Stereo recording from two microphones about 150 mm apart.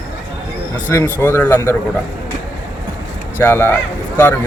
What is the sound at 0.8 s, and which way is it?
Speech, 15° left (ahead or behind).